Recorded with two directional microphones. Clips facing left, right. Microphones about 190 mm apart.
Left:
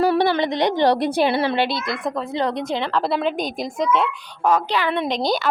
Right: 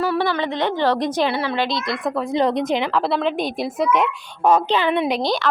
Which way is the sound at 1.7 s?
Centre (ahead or behind).